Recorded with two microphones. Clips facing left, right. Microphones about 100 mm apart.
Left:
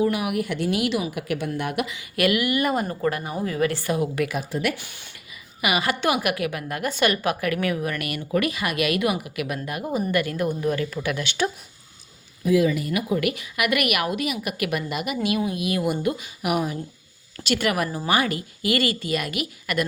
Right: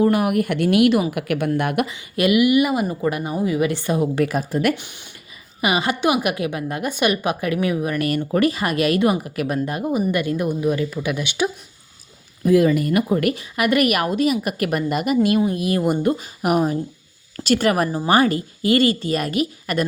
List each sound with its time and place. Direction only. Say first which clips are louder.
0.0 s a woman's voice: right 5 dB; 45° right (ahead or behind)
1.9 s speech: right 4 dB; 25° right (ahead or behind); by 4.7 s 45° right (ahead or behind)
4.7 s speech: right 7 dB; 20° right (ahead or behind)
8.3 s a woman's voice: right 2 dB; 35° right (ahead or behind)
10.1 s speech: right 3 dB; 20° right (ahead or behind)
12.5 s a woman's voice: right 5 dB; 50° right (ahead or behind); by 19.8 s 35° right (ahead or behind)